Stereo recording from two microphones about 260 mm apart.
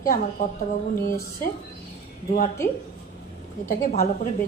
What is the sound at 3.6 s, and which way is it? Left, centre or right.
Speech, left.